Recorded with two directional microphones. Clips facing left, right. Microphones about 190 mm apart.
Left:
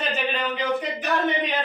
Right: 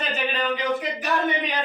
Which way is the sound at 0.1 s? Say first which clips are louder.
Right 1 dB; centre (ahead or behind).